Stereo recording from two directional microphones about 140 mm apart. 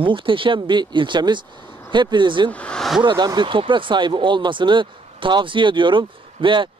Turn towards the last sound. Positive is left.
turn(degrees=-35)  # may be behind; listen again after turning